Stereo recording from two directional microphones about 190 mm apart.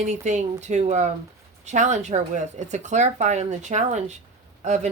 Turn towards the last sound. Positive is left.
turn(degrees=-35)  # may be behind; listen again after turning